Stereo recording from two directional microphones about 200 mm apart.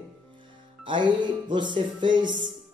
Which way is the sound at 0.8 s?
25° right (ahead or behind).